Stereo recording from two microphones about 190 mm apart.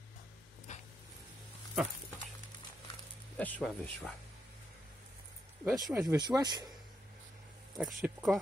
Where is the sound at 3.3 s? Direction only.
10° left (ahead or behind).